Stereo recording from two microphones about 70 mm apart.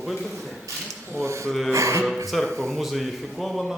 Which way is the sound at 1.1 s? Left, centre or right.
Right.